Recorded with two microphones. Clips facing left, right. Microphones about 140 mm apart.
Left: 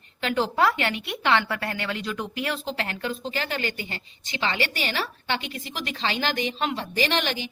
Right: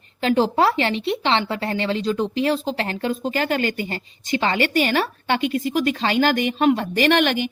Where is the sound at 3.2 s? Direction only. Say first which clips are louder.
Right 9 dB; 45° right (ahead or behind).